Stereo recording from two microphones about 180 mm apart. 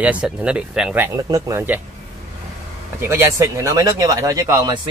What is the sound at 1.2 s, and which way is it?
Speech, 15° right (ahead or behind).